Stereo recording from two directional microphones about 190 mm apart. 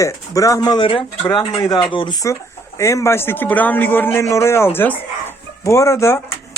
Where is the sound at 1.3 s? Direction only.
20° left (ahead or behind).